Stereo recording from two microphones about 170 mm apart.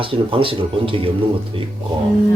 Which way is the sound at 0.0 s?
30° right (ahead or behind).